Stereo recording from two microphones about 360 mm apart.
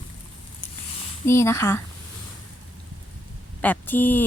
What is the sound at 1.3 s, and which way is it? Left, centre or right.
Speech, centre.